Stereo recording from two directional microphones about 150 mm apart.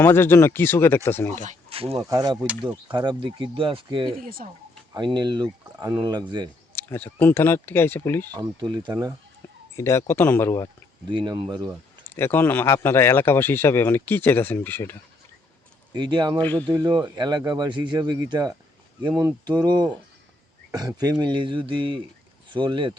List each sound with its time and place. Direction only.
0.0 s speech: 15° left (ahead or behind)
1.7 s speech: 40° right (ahead or behind)
2.0 s speech: 25° right (ahead or behind)
6.7 s speech: 15° left (ahead or behind)
8.3 s speech: 25° right (ahead or behind)
9.7 s speech: 20° left (ahead or behind)
11.1 s speech: 30° right (ahead or behind)
12.0 s speech: 15° left (ahead or behind)
15.9 s speech: 30° right (ahead or behind)
16.4 s speech: 10° left (ahead or behind)
17.2 s speech: 30° right (ahead or behind)